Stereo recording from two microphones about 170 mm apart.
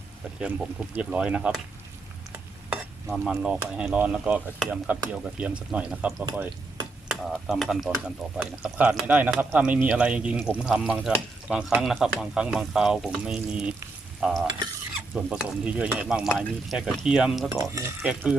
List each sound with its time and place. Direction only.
0.9 s speech: 10° right (ahead or behind)
2.3 s stir: 10° right (ahead or behind)
3.1 s speech: 5° right (ahead or behind)
14.2 s stir: centre (ahead or behind)
15.1 s speech: 5° right (ahead or behind)
17.5 s speech: 20° right (ahead or behind)
18.0 s speech: 5° right (ahead or behind)